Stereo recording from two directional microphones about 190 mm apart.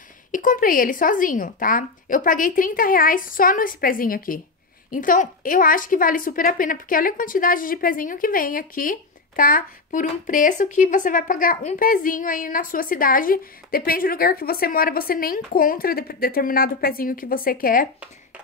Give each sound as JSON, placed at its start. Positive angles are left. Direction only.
{"t": 0.3, "sound": "speech", "side_deg": 45}